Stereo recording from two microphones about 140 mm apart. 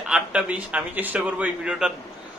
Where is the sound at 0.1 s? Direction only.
10° right (ahead or behind).